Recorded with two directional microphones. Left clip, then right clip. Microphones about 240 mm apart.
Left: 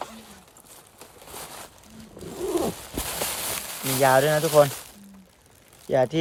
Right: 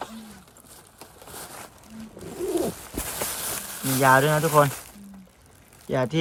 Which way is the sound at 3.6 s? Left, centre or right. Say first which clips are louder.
Even; left.